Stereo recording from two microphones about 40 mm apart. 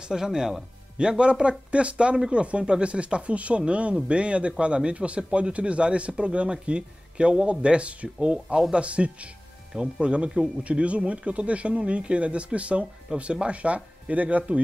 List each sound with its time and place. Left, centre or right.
0.0 s speech: centre; by 14.6 s right